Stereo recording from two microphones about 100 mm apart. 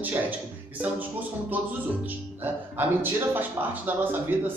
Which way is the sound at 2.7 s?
20° right (ahead or behind).